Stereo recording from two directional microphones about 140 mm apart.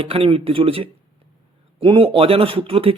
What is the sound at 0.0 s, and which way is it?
Speech, 40° right (ahead or behind).